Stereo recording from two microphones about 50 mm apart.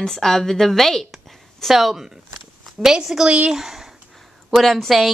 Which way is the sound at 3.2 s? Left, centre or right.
Right.